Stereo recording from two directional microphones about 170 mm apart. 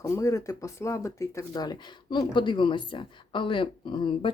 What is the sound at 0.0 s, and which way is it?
Speech, 15° left (ahead or behind).